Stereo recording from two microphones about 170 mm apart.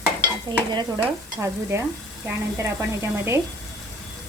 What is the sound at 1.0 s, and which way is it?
Speech, 15° right (ahead or behind).